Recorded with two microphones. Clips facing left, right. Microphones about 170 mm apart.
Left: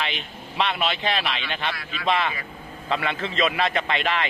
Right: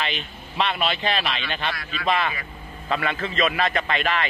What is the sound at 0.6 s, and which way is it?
A man's voice, 20° left (ahead or behind).